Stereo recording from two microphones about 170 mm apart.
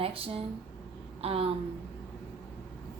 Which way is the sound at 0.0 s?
35° right (ahead or behind).